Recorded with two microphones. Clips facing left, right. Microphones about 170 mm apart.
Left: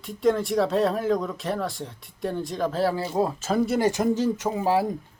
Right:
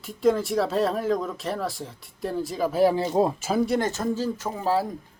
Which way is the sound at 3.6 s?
Centre (ahead or behind).